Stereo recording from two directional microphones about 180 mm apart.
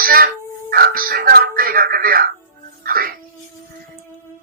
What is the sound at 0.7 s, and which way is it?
Speech, 55° right (ahead or behind).